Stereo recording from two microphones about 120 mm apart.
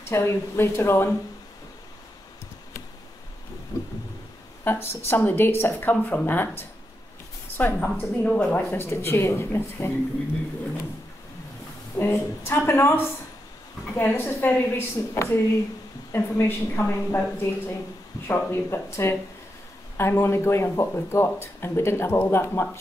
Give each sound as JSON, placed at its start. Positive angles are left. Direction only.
{"t": 0.0, "sound": "speech", "side_deg": 20}
{"t": 3.7, "sound": "a sound", "side_deg": 25}
{"t": 4.6, "sound": "speech", "side_deg": 20}
{"t": 12.0, "sound": "speech", "side_deg": 20}